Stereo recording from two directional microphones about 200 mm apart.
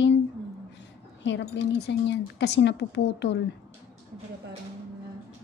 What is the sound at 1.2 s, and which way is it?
Speech, 65° left (ahead or behind).